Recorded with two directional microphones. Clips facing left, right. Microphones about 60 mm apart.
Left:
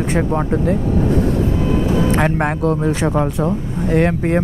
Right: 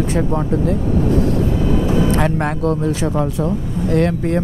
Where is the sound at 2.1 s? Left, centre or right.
Left.